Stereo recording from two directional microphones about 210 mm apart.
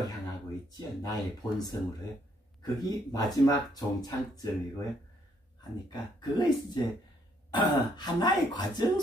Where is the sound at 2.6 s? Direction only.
15° left (ahead or behind).